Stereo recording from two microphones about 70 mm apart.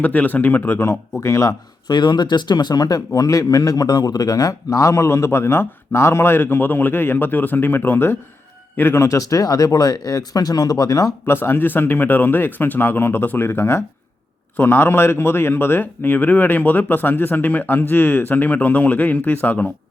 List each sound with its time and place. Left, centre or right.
0.0 s a man's voice: left
1.9 s speech: left
3.1 s a man's voice: left
9.0 s speech: left
11.3 s a man's voice: left